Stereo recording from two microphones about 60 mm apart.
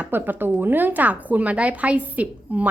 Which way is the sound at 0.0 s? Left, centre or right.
Right.